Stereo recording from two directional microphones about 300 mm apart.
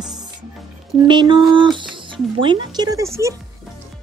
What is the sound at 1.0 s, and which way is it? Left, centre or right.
A woman's voice, centre.